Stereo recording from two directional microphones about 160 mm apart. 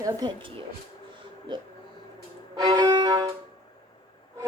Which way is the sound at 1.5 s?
30° right (ahead or behind).